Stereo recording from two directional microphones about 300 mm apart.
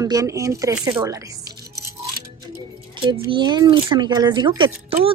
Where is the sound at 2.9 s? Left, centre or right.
Centre.